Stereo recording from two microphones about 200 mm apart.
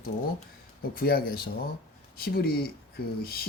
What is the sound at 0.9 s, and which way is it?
Speech, 50° left (ahead or behind).